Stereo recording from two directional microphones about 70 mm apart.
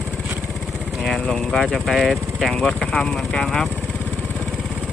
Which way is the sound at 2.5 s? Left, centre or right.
Centre.